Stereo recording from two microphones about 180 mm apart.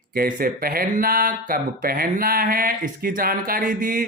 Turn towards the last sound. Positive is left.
turn(degrees=-50)  # may be behind; listen again after turning